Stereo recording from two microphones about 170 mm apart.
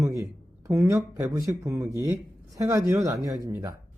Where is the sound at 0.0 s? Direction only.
15° right (ahead or behind).